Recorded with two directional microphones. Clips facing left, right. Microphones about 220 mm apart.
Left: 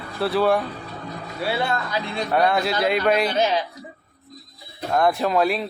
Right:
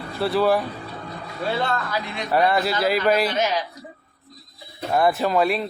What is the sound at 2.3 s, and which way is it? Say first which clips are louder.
Speech: right 1 dB; 5° right (ahead or behind).